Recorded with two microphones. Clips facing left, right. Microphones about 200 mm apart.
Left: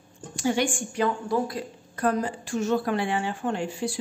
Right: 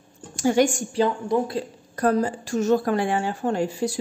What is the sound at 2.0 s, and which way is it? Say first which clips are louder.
A woman's voice: right 4 dB; 40° right (ahead or behind).